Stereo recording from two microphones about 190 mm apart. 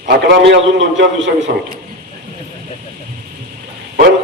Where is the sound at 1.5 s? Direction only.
50° right (ahead or behind).